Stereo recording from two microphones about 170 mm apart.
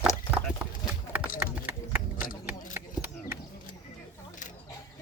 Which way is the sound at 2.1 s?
55° left (ahead or behind).